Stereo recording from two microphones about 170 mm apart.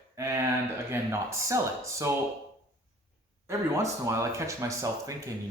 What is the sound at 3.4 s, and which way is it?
Speech, 15° right (ahead or behind).